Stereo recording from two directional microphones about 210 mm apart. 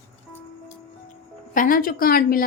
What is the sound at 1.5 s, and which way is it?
Speech, 40° left (ahead or behind).